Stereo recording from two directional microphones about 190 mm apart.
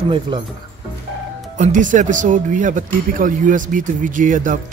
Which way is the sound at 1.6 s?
40° right (ahead or behind).